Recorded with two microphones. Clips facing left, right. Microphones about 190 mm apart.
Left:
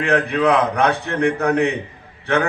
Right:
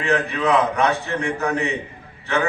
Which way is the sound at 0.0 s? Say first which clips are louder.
Left 4 dB; 60° left (ahead or behind).